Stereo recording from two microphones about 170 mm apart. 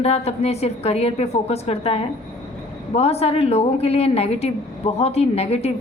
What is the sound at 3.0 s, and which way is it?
A woman's voice, 35° left (ahead or behind).